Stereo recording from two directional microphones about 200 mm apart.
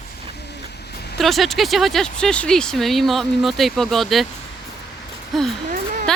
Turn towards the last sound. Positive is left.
turn(degrees=5)  # may be behind; listen again after turning